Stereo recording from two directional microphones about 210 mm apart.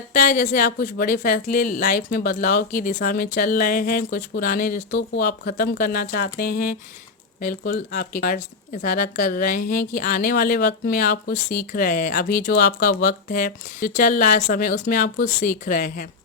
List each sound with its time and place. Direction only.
0.1 s speech: 40° left (ahead or behind)